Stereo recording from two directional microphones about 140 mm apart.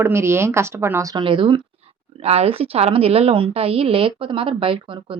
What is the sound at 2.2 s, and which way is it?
Speech, 45° right (ahead or behind).